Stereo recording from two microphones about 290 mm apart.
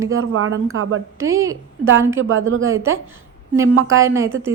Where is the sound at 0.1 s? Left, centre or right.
Right.